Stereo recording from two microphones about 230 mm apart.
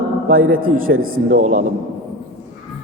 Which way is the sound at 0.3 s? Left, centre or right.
Right.